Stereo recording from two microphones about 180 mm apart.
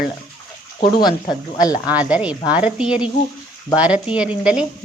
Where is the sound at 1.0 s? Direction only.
25° left (ahead or behind).